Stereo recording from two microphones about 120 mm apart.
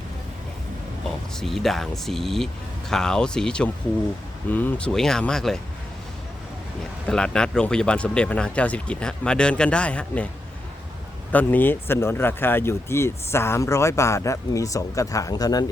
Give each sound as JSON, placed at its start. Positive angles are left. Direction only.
{"t": 1.4, "sound": "speech", "side_deg": 0}
{"t": 4.9, "sound": "speech", "side_deg": 5}
{"t": 7.1, "sound": "speech", "side_deg": 5}
{"t": 11.3, "sound": "speech", "side_deg": 15}